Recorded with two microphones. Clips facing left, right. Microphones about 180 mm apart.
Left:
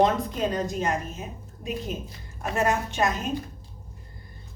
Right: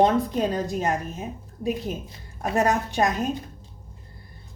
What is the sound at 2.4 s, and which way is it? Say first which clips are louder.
Speech: right 3 dB; 40° right (ahead or behind).